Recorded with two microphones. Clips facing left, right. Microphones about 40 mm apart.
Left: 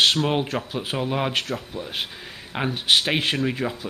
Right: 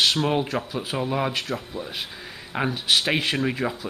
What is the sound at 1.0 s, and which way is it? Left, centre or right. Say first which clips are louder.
Speech: even; centre.